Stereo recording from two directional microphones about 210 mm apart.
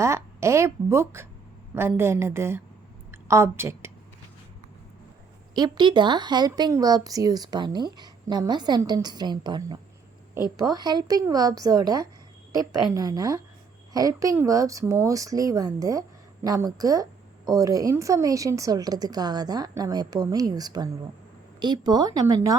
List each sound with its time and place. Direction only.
0.0 s a woman's voice: 15° right (ahead or behind)
5.5 s speech: 20° right (ahead or behind)